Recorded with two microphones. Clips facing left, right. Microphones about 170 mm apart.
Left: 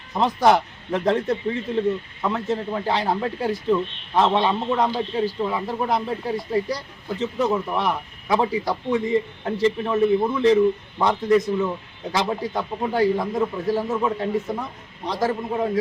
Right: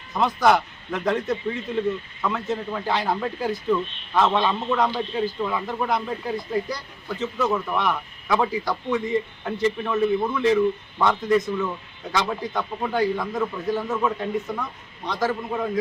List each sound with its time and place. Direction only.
0.1 s speech: 30° left (ahead or behind)